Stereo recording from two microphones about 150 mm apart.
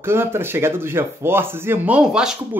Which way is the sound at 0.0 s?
15° right (ahead or behind).